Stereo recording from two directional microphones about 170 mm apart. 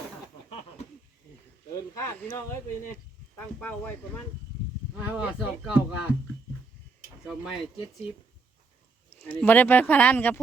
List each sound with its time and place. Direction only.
1.7 s a sound: 15° left (ahead or behind)
3.3 s speech: 10° left (ahead or behind)
4.9 s speech: 10° right (ahead or behind)
7.3 s speech: 5° right (ahead or behind)
9.1 s speech: 10° left (ahead or behind)